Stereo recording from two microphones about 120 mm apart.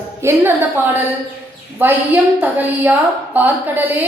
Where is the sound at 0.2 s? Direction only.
20° right (ahead or behind).